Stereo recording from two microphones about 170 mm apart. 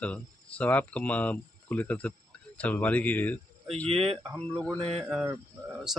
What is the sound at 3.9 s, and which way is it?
Speech, 35° right (ahead or behind).